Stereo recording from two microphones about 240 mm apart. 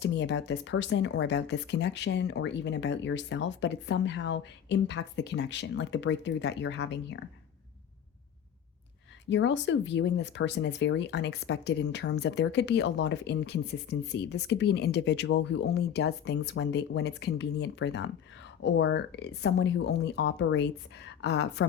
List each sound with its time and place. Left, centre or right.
0.0 s speech: left
9.3 s speech: left